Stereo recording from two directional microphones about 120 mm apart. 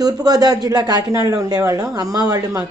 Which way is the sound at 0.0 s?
35° right (ahead or behind).